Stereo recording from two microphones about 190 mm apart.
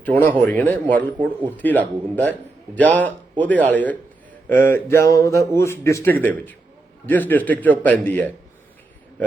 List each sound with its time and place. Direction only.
0.0 s a man's voice: 10° left (ahead or behind)